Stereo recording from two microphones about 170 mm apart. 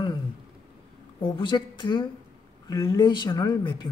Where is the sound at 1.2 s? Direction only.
30° left (ahead or behind).